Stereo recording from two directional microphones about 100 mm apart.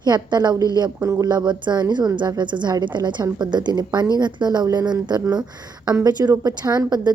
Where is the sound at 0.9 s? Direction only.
30° right (ahead or behind).